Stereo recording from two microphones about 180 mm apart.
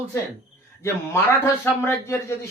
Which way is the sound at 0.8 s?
15° left (ahead or behind).